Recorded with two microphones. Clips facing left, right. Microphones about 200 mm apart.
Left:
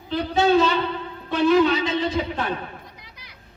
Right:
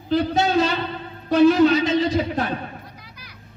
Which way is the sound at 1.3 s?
45° right (ahead or behind).